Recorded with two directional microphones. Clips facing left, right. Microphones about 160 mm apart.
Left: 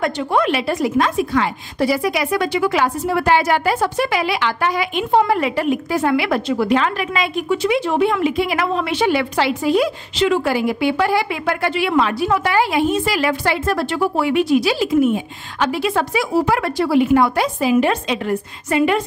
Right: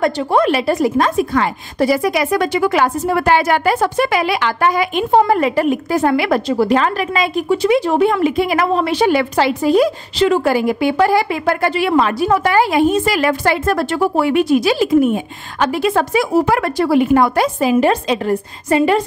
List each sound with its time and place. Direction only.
0.0 s a woman's voice: 40° right (ahead or behind)